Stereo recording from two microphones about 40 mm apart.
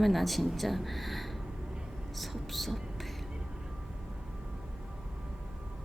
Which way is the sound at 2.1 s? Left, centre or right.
Centre.